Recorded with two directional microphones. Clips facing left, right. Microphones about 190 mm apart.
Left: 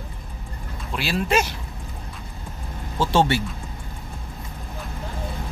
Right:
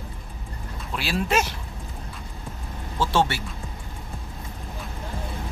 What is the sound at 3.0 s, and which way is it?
Speech, 15° left (ahead or behind).